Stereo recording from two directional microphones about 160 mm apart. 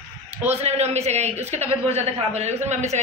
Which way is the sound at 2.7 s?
45° right (ahead or behind).